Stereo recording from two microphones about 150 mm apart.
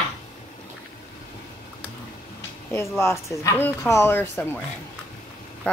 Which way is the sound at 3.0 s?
20° left (ahead or behind).